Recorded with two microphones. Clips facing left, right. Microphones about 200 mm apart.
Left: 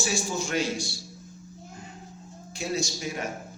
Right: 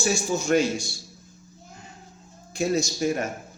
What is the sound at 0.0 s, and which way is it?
Speech, 50° right (ahead or behind).